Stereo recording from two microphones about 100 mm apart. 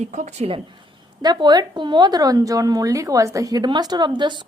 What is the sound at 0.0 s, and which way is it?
Speech, 80° right.